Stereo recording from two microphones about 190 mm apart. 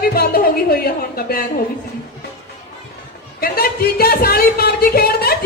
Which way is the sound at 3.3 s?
50° left (ahead or behind).